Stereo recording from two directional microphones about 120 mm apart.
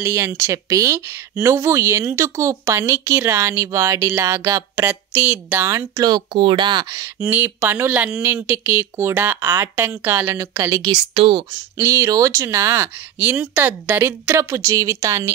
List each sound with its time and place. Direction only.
0.0 s speech: 20° right (ahead or behind)
5.9 s speech: 35° right (ahead or behind)
7.2 s speech: 15° right (ahead or behind)
11.1 s speech: 45° right (ahead or behind)
11.7 s speech: 25° right (ahead or behind)